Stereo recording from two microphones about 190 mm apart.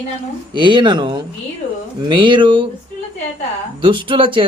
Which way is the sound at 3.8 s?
25° right (ahead or behind).